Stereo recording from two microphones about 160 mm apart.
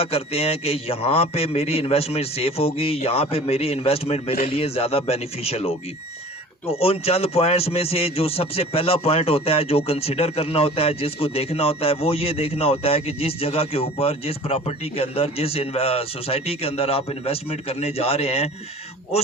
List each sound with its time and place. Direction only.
0.0 s a man's voice: 40° left (ahead or behind)